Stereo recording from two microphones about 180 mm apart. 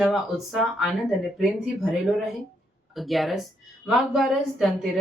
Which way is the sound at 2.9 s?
Centre (ahead or behind).